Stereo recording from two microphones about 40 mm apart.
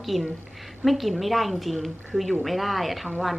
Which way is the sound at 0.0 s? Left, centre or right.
Centre.